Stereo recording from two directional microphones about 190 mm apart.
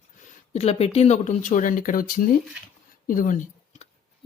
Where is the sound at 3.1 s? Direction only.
45° left (ahead or behind).